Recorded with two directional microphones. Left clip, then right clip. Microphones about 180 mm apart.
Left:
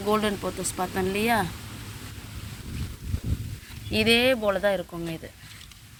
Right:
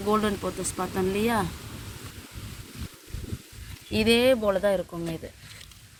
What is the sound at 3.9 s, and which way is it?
Speech, 20° right (ahead or behind).